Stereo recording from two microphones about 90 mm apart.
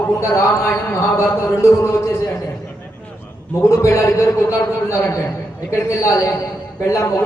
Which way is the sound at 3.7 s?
35° left (ahead or behind).